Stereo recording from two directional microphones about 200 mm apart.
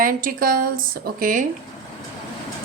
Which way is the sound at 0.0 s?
45° right (ahead or behind).